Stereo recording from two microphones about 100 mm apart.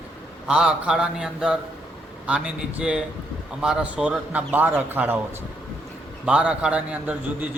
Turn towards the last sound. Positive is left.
turn(degrees=-15)  # may be behind; listen again after turning